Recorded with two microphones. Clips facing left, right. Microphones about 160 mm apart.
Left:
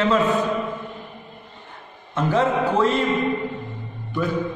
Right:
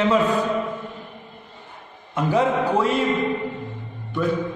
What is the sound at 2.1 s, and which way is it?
Speech, 10° right (ahead or behind).